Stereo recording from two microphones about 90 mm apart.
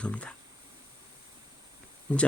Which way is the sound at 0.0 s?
15° left (ahead or behind).